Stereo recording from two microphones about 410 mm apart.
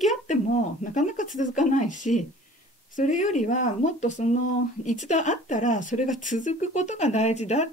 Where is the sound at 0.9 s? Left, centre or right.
Centre.